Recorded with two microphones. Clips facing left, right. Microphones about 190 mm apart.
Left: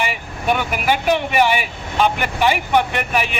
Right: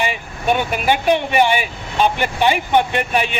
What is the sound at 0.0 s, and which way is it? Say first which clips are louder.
Speech: right 1 dB; 25° right (ahead or behind).